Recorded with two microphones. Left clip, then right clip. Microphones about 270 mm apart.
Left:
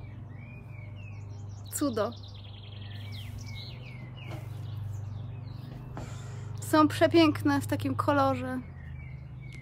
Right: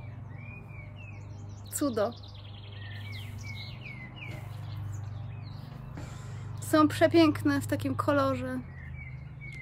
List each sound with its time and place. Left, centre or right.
1.8 s speech: centre
3.1 s bird: left
6.7 s speech: centre